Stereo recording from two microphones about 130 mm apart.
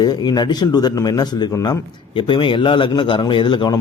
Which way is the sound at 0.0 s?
35° left (ahead or behind).